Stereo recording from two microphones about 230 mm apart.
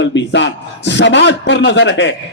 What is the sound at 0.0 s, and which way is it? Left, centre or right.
A man's voice, left.